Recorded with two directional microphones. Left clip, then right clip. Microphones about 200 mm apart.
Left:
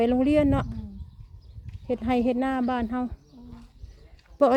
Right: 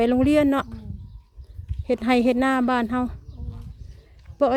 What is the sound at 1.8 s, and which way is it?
Speech, 30° right (ahead or behind).